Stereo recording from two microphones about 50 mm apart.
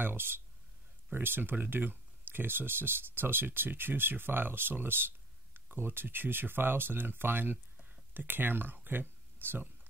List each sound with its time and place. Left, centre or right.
0.0 s speech: right